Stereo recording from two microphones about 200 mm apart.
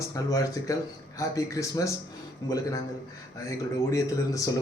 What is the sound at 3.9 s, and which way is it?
Speech, 15° left (ahead or behind).